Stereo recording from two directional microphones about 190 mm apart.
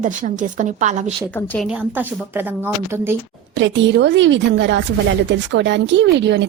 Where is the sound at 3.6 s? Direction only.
70° right (ahead or behind).